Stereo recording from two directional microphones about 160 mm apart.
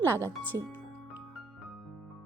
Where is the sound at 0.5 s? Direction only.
20° right (ahead or behind).